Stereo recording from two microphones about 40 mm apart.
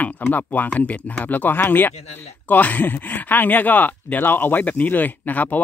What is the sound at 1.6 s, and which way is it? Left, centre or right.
Speech, left.